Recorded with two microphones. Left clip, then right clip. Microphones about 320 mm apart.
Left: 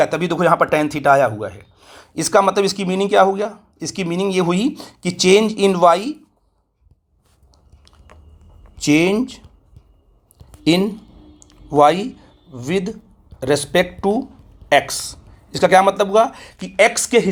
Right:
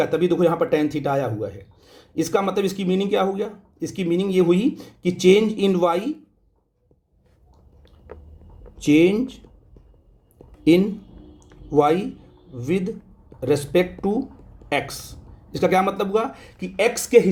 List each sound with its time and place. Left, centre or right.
0.0 s a man's voice: centre
8.8 s a man's voice: centre
10.6 s a man's voice: centre